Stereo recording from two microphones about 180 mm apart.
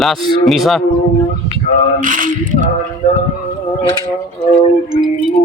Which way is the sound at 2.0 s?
50° right (ahead or behind).